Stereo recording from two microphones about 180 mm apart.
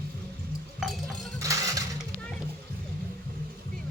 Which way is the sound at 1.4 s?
20° right (ahead or behind).